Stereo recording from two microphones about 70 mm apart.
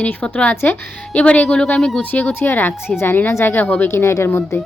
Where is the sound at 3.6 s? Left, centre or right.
Centre.